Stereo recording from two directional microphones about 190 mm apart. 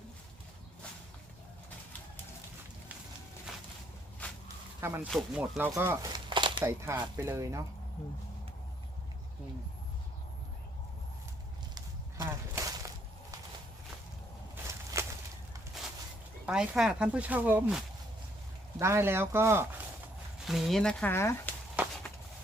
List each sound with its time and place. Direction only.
4.2 s a sound: 10° left (ahead or behind)
4.8 s speech: 15° right (ahead or behind)
5.0 s speech: centre (ahead or behind)
6.1 s crumpling: 25° right (ahead or behind)
6.7 s speech: 15° right (ahead or behind)
12.2 s a sound: 15° right (ahead or behind)
14.5 s a sound: 15° right (ahead or behind)
16.5 s speech: 5° right (ahead or behind)
18.8 s speech: 15° right (ahead or behind)
20.4 s speech: centre (ahead or behind)